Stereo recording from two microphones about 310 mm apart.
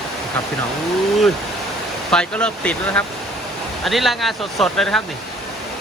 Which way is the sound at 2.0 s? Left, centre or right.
Centre.